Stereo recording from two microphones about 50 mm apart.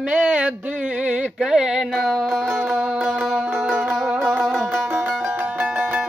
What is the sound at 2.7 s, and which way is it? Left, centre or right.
Music, right.